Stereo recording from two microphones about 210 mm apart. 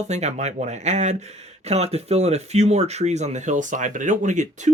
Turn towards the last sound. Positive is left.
turn(degrees=-35)  # may be behind; listen again after turning